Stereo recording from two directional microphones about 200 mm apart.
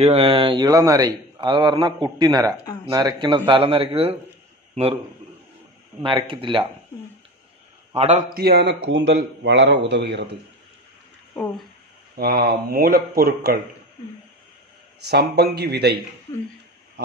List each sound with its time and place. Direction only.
0.0 s a man's voice: 30° right (ahead or behind)
6.0 s a man's voice: 25° right (ahead or behind)
7.9 s a man's voice: 30° right (ahead or behind)
8.4 s a man's voice: 55° right (ahead or behind)
12.2 s speech: 50° right (ahead or behind)
15.0 s speech: 55° right (ahead or behind)